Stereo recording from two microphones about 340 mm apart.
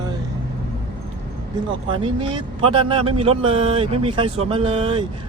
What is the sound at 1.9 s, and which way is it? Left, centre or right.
A man's voice, centre.